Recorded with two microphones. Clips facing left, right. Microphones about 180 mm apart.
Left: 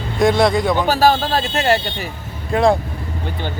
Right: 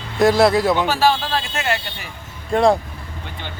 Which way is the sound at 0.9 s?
40° left (ahead or behind).